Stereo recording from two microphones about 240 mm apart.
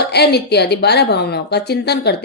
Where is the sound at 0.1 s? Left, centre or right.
Left.